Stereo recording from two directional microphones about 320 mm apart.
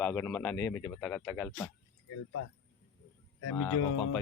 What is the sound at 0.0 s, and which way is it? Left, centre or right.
Speech, centre.